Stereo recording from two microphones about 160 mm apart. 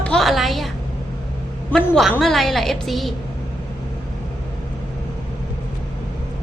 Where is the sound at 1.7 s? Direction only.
Centre (ahead or behind).